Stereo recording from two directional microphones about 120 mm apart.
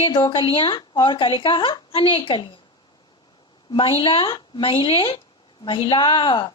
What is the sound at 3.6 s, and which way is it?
A woman's voice, 45° left (ahead or behind).